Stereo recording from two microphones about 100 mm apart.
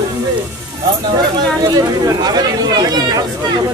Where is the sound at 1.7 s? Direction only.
40° right (ahead or behind).